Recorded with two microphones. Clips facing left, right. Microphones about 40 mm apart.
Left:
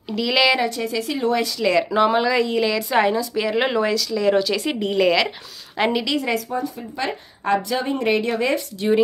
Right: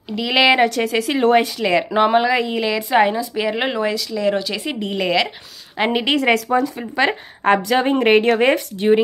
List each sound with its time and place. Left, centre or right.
0.1 s speech: centre
0.7 s speech: right
1.4 s a woman's voice: right
6.1 s a woman's voice: right